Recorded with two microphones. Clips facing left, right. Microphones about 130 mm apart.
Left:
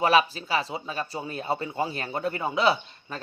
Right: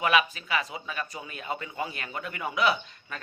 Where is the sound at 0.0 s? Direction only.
35° left (ahead or behind).